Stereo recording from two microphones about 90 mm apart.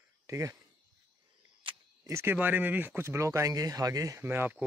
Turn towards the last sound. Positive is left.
turn(degrees=-20)  # may be behind; listen again after turning